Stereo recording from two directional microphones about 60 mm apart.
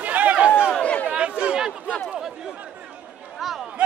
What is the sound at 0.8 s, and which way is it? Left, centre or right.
Chatter, left.